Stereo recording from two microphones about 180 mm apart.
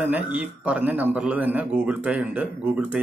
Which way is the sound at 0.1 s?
10° right (ahead or behind).